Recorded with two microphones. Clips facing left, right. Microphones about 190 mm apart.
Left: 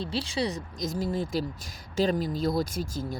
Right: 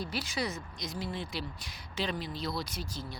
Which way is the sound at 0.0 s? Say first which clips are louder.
Left 5 dB; 30° left (ahead or behind).